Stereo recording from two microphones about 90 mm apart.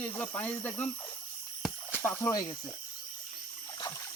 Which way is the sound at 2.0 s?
25° left (ahead or behind).